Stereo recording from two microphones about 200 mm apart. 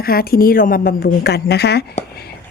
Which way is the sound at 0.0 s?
50° left (ahead or behind).